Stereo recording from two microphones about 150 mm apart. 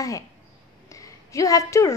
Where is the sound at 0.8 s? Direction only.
20° left (ahead or behind).